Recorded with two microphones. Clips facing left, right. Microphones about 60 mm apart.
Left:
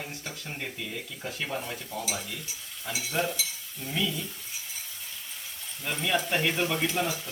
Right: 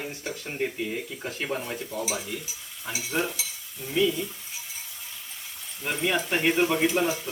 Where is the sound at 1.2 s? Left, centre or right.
Right.